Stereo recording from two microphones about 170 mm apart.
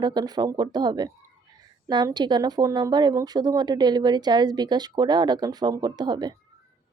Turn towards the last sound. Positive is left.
turn(degrees=-25)  # may be behind; listen again after turning